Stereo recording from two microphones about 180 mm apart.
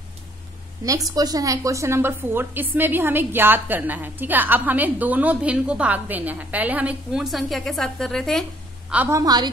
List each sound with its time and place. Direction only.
0.8 s a woman's voice: 20° right (ahead or behind); by 8.5 s centre (ahead or behind)
8.9 s a woman's voice: 15° right (ahead or behind)